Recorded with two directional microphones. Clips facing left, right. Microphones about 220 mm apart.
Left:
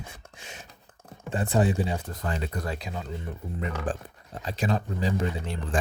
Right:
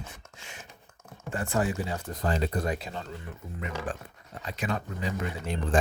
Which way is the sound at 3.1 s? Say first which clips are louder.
Left 5 dB; 30° left (ahead or behind).